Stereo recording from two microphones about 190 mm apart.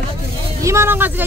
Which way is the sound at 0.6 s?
15° right (ahead or behind).